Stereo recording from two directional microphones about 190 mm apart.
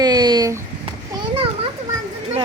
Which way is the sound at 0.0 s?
20° right (ahead or behind).